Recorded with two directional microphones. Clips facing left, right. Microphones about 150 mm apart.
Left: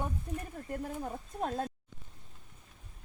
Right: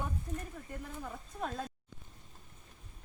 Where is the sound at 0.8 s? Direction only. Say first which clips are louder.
Left 6 dB; 35° left (ahead or behind).